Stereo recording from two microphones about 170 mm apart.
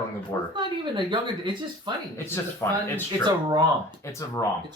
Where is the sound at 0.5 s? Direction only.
30° right (ahead or behind).